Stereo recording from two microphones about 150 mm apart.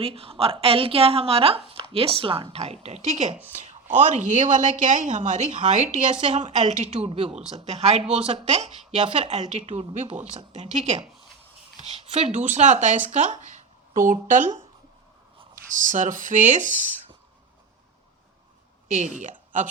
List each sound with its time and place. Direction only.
0.0 s a woman's voice: 40° right (ahead or behind); by 14.6 s 60° right (ahead or behind)
15.7 s speech: 60° right (ahead or behind)
18.9 s speech: 55° right (ahead or behind)